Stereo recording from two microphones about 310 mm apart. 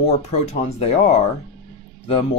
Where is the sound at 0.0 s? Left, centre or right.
Left.